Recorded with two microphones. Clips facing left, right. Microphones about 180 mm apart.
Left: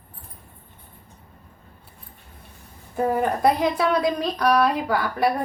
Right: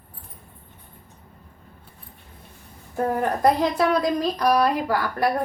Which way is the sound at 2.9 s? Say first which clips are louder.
Left 1 dB; 5° left (ahead or behind).